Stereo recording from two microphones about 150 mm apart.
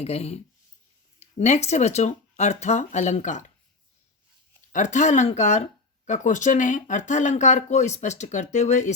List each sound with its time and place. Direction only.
0.0 s speech: 45° left (ahead or behind)
4.7 s speech: 55° left (ahead or behind)